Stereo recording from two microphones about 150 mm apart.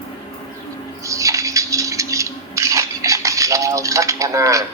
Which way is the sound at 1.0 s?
20° right (ahead or behind).